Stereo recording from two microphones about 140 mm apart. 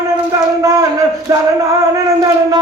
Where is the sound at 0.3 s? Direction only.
25° right (ahead or behind).